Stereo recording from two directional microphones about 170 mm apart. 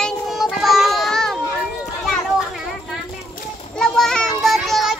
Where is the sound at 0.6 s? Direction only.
Centre (ahead or behind).